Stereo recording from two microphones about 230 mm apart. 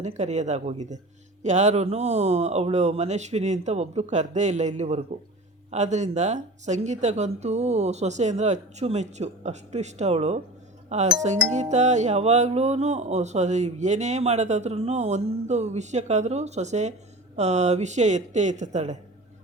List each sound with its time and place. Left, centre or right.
0.2 s speech: right
1.4 s music: right
10.8 s speech: right
11.2 s music: right
17.3 s speech: right